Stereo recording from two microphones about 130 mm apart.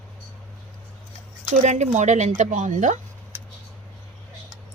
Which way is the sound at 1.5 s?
65° right (ahead or behind).